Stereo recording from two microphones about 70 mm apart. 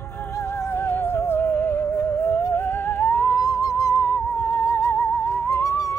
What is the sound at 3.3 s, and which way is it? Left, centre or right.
Music, left.